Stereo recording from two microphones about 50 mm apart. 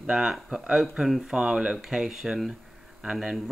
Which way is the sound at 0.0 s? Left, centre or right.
Centre.